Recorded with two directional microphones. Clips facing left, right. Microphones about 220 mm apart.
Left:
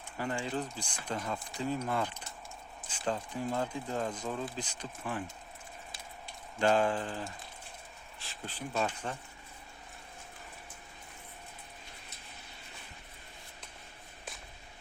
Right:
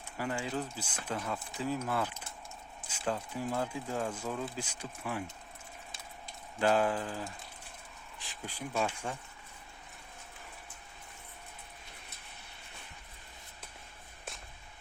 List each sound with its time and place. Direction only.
0.2 s speech: 5° right (ahead or behind)
6.6 s speech: 5° right (ahead or behind)